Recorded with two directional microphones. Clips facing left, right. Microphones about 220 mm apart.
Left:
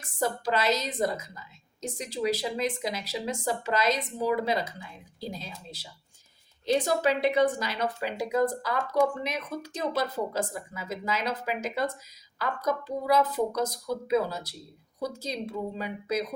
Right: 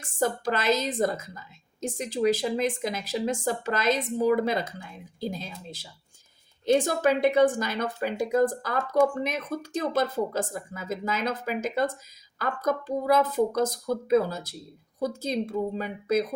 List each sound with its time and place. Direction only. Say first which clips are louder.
0.2 s speech: right 1 dB; 50° right (ahead or behind)